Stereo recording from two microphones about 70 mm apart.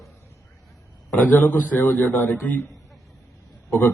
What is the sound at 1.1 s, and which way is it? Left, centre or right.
Speech, left.